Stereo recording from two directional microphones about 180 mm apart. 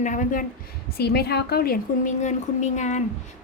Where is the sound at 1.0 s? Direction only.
60° left (ahead or behind).